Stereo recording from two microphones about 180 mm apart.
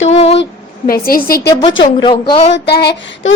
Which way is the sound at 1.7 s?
25° left (ahead or behind).